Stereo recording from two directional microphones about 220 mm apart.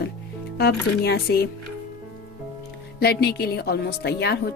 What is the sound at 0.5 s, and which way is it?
Speech, 45° left (ahead or behind).